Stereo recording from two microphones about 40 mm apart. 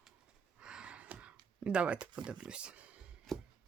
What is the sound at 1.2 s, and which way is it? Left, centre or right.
Speech, right.